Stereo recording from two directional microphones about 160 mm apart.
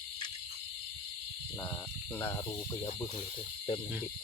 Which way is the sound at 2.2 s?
15° left (ahead or behind).